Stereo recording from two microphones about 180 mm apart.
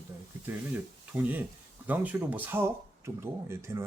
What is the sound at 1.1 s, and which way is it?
Speech, 10° right (ahead or behind).